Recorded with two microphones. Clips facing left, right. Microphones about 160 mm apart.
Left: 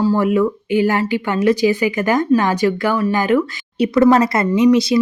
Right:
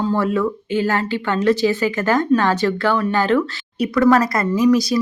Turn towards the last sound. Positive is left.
turn(degrees=25)  # may be behind; listen again after turning